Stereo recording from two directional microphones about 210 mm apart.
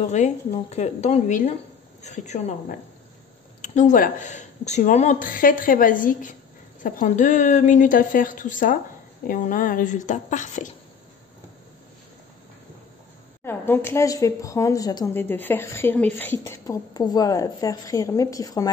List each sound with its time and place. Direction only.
0.1 s speech: 30° left (ahead or behind)
13.4 s a woman's voice: 10° left (ahead or behind)